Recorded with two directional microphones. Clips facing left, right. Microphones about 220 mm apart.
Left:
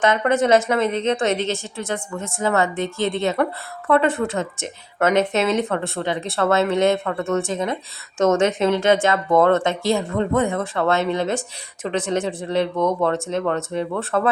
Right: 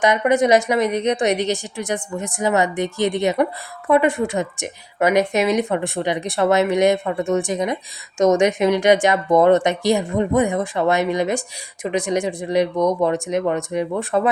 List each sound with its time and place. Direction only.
0.0 s a woman's voice: 15° right (ahead or behind)